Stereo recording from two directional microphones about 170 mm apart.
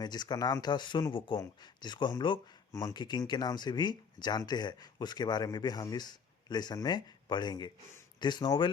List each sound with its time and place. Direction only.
0.0 s speech: 25° left (ahead or behind)